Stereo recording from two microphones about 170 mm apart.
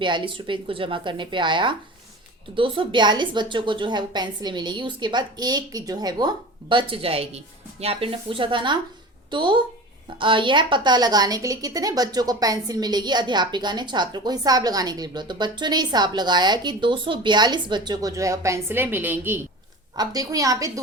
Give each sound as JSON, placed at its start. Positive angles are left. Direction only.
{"t": 0.0, "sound": "a woman's voice", "side_deg": -30}